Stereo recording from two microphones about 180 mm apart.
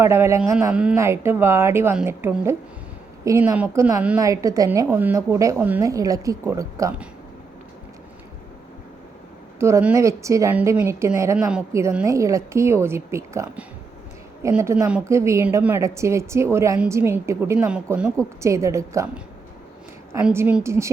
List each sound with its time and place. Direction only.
0.0 s a woman's voice: 15° right (ahead or behind)
9.6 s a woman's voice: 15° right (ahead or behind)
20.1 s a woman's voice: 15° right (ahead or behind)